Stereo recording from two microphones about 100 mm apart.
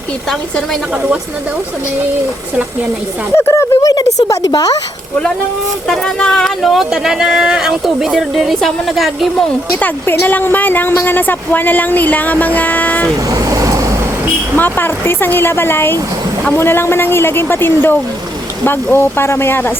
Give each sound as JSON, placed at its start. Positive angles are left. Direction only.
{"t": 0.3, "sound": "speech", "side_deg": 5}
{"t": 3.3, "sound": "speech", "side_deg": 30}
{"t": 5.9, "sound": "speech", "side_deg": 5}
{"t": 9.8, "sound": "a woman's voice", "side_deg": 20}
{"t": 13.3, "sound": "vehicle", "side_deg": -35}
{"t": 14.5, "sound": "a woman's voice", "side_deg": 20}